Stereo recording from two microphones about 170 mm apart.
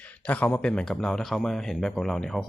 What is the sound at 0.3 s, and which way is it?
Speech, 10° left (ahead or behind).